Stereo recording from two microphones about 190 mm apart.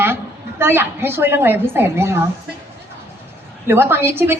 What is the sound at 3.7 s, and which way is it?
Speech, 10° right (ahead or behind).